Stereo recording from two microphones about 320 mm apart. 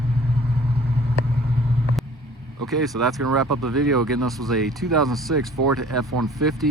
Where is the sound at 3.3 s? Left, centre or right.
Right.